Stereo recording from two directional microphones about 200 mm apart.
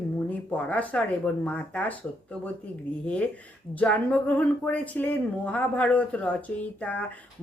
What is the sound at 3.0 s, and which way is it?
Speech, 5° left (ahead or behind).